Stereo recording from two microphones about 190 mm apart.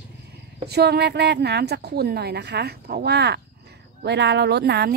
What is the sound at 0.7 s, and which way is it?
A woman's voice, 60° right (ahead or behind).